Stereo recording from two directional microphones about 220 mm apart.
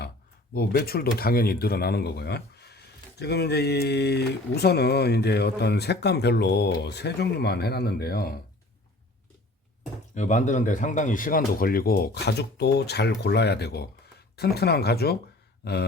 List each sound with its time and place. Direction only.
0.5 s speech: 45° left (ahead or behind)
10.2 s speech: 35° left (ahead or behind)